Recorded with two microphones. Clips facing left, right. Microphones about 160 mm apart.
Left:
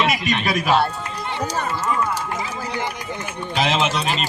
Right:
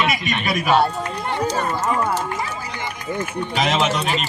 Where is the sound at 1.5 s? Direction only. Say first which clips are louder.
Right 2 dB; 40° right (ahead or behind).